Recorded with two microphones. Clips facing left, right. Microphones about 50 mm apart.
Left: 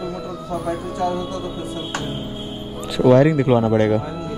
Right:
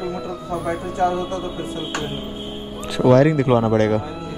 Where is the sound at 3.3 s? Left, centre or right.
Centre.